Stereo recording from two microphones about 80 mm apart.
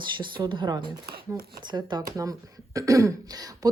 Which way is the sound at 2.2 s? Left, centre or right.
Right.